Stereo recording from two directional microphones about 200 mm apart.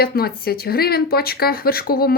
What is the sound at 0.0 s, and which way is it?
Speech, 50° left (ahead or behind).